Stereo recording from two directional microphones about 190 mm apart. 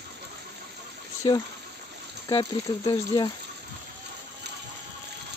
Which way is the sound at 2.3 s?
20° left (ahead or behind).